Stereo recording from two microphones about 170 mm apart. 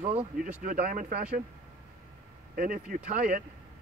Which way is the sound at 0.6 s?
55° right (ahead or behind).